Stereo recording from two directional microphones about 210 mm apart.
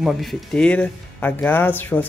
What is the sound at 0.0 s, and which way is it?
Speech, centre (ahead or behind).